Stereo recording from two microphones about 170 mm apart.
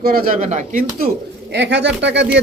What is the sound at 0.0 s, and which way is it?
Speech, 60° right (ahead or behind).